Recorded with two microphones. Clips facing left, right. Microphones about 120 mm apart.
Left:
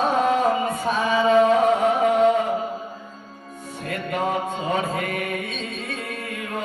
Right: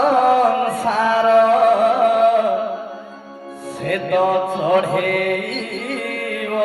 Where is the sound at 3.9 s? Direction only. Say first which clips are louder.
Right 8 dB; 70° right (ahead or behind).